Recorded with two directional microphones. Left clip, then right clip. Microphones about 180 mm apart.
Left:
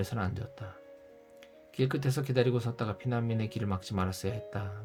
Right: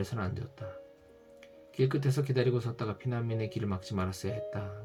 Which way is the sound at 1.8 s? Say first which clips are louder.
Right 1 dB; 40° left (ahead or behind).